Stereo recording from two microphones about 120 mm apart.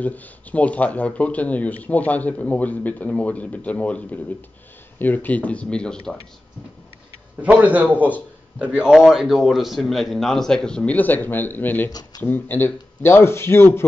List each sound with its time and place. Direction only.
0.0 s speech: 15° left (ahead or behind)
7.4 s a man's voice: 10° right (ahead or behind); by 13.8 s 20° left (ahead or behind)